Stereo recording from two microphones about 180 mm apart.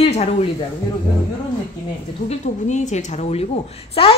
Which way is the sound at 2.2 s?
40° left (ahead or behind).